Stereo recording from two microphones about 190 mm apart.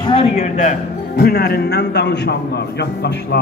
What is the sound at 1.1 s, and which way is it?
Speech, 55° left (ahead or behind).